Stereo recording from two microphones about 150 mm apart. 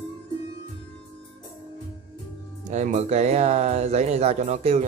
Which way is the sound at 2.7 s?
50° right (ahead or behind).